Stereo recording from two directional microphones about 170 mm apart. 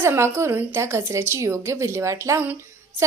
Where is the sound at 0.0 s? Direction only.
15° right (ahead or behind).